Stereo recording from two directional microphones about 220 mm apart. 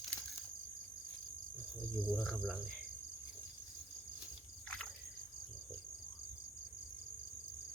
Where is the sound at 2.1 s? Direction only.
Centre (ahead or behind).